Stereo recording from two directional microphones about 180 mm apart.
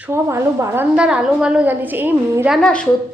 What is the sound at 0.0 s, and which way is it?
A woman's voice, 15° right (ahead or behind).